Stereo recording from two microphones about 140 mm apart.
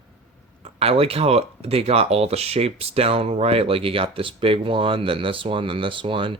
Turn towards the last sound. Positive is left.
turn(degrees=-35)  # may be behind; listen again after turning